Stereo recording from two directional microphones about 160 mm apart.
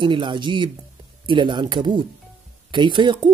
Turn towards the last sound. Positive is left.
turn(degrees=-30)  # may be behind; listen again after turning